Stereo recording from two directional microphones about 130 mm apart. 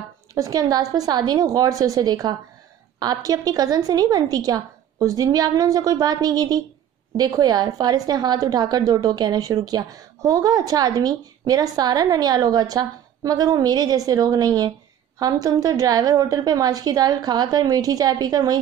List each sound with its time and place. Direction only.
0.3 s a woman's voice: 25° right (ahead or behind)